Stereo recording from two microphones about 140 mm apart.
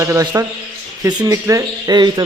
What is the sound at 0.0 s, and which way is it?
Speech, 20° right (ahead or behind).